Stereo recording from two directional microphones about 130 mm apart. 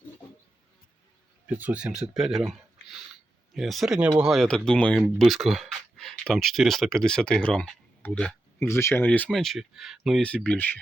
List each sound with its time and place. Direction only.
1.5 s speech: 10° right (ahead or behind)
4.4 s speech: 5° left (ahead or behind)
8.5 s speech: 20° left (ahead or behind); by 10.2 s centre (ahead or behind)
10.2 s speech: 10° left (ahead or behind)